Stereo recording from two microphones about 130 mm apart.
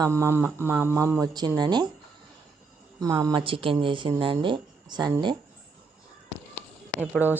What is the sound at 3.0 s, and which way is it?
Speech, 25° right (ahead or behind).